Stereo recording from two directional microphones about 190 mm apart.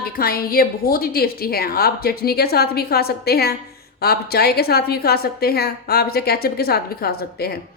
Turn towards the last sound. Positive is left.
turn(degrees=55)  # may be behind; listen again after turning